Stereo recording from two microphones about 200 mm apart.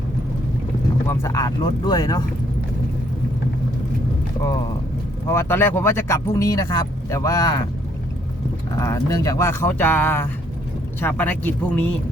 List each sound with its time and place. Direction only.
1.0 s speech: 15° left (ahead or behind)
5.3 s speech: 10° left (ahead or behind)
8.8 s speech: 15° left (ahead or behind)